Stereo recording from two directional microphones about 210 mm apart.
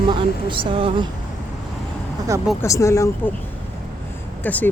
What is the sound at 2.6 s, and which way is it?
Speech, 15° left (ahead or behind).